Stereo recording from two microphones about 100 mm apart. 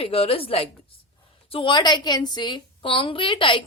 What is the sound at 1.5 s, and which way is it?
Speech, 55° left (ahead or behind).